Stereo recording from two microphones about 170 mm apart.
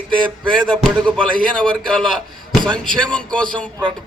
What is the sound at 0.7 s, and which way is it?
A man's voice, 5° left (ahead or behind).